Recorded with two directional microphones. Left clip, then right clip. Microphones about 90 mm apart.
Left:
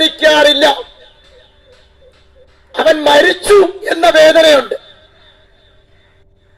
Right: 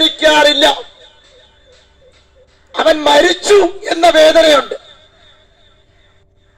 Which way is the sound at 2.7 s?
Centre (ahead or behind).